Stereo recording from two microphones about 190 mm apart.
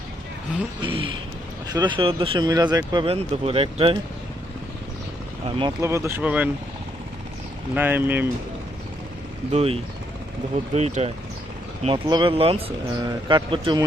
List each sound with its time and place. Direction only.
0.8 s speech: 25° right (ahead or behind)
5.5 s speech: 20° right (ahead or behind)
7.8 s speech: 10° right (ahead or behind)
9.5 s speech: 35° right (ahead or behind)